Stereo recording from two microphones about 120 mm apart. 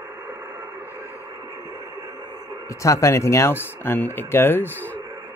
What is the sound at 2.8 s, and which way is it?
Speech, 25° left (ahead or behind).